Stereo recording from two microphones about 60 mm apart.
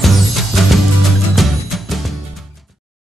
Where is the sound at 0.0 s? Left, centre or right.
Centre.